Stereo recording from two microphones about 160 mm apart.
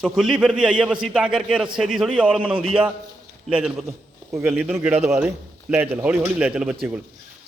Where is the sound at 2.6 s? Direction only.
35° right (ahead or behind).